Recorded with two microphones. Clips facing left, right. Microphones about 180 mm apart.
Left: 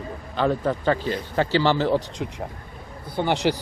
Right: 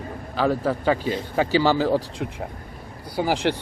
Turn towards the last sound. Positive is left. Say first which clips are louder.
# even
turn(degrees=0)  # may be behind; listen again after turning